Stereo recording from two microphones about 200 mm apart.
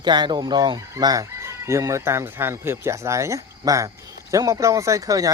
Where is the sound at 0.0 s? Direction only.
20° right (ahead or behind).